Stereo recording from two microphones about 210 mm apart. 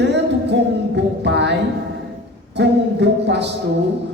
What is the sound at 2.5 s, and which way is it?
Speech, 55° right (ahead or behind).